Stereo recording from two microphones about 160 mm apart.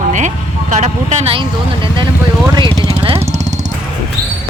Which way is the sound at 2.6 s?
30° right (ahead or behind).